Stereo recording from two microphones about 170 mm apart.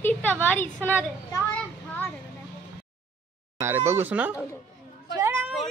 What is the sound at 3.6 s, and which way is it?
Speech, 15° right (ahead or behind).